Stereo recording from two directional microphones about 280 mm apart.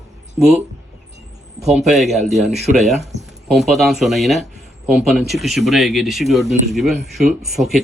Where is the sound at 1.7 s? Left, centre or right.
Centre.